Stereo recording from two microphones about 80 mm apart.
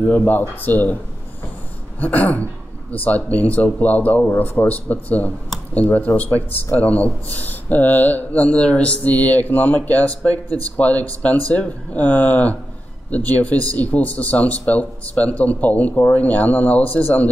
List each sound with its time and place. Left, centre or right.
0.3 s speech: left
2.0 s speech: centre